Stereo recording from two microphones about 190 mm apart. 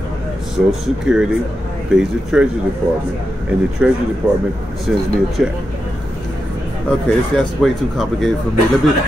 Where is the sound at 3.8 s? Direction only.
5° right (ahead or behind).